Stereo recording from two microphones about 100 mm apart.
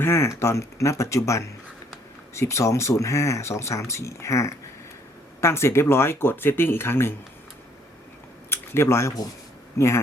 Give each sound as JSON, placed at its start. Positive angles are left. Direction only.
{"t": 0.0, "sound": "speech", "side_deg": 25}
{"t": 8.4, "sound": "speech", "side_deg": 25}